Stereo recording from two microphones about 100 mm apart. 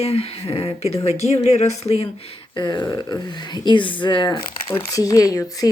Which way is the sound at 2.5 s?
50° left (ahead or behind).